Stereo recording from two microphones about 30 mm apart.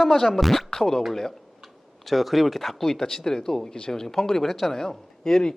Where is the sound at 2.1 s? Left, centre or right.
Centre.